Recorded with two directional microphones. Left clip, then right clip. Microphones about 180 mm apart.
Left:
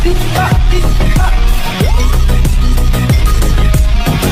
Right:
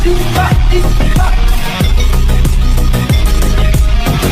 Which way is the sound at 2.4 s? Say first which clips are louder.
Even; centre (ahead or behind).